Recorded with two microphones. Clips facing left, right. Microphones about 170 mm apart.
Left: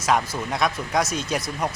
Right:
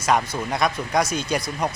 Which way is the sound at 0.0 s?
Centre (ahead or behind).